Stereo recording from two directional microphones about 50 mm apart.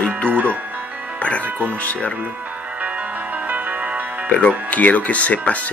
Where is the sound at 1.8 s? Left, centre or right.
Left.